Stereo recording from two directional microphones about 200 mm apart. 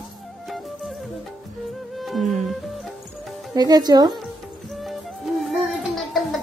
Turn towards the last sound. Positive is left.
turn(degrees=0)  # may be behind; listen again after turning